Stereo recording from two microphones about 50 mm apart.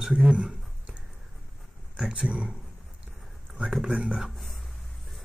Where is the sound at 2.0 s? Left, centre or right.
Centre.